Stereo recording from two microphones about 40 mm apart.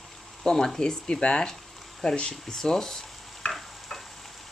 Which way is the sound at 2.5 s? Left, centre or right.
Centre.